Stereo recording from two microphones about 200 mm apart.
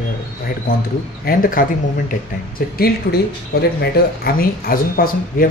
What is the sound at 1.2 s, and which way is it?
Speech, 45° left (ahead or behind).